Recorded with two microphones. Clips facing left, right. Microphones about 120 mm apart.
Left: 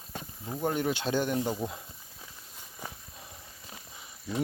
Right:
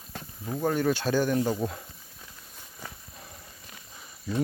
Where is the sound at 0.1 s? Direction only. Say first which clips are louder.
Right 3 dB; 15° left (ahead or behind).